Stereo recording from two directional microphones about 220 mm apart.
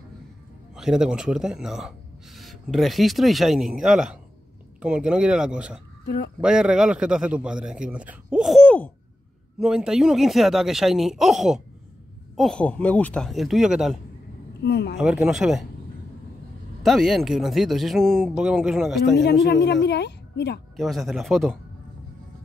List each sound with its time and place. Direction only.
0.7 s speech: centre (ahead or behind)
6.0 s speech: 45° left (ahead or behind)
6.4 s speech: 5° right (ahead or behind)
14.6 s speech: 50° left (ahead or behind)
15.0 s speech: centre (ahead or behind)
16.8 s speech: centre (ahead or behind)
19.1 s speech: 50° left (ahead or behind)
20.7 s speech: centre (ahead or behind)